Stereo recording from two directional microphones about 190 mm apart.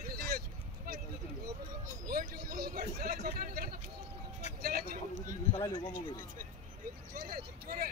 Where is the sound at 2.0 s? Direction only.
55° right (ahead or behind).